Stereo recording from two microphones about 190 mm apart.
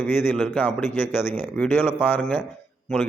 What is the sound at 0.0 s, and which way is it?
Speech, 10° left (ahead or behind).